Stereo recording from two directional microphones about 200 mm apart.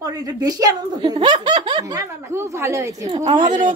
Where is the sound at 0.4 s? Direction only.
20° right (ahead or behind).